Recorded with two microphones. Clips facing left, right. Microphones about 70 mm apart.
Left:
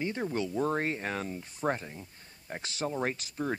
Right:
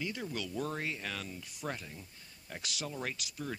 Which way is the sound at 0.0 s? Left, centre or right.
Left.